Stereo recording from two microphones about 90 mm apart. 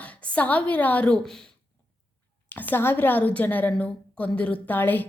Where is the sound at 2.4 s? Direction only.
20° left (ahead or behind).